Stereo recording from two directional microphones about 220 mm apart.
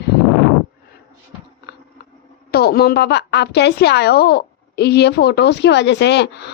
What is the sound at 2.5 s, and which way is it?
A woman's voice, 45° left (ahead or behind).